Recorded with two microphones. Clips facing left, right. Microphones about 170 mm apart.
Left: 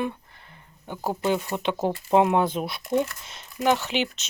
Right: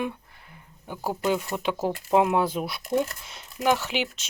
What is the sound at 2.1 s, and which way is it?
Speech, 5° right (ahead or behind).